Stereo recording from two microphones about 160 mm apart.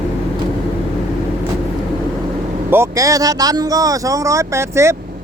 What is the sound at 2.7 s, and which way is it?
Speech, 20° right (ahead or behind).